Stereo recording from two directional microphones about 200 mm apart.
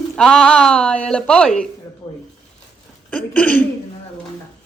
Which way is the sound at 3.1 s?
5° left (ahead or behind).